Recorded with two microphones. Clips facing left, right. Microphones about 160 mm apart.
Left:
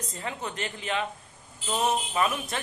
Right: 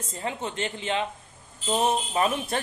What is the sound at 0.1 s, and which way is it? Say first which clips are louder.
A man's voice: right 5 dB; 25° right (ahead or behind).